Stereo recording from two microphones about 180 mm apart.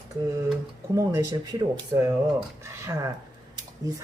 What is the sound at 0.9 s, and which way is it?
Speech, 20° right (ahead or behind).